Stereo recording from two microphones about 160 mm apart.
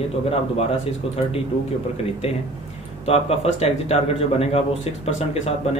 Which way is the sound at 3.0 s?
40° left (ahead or behind).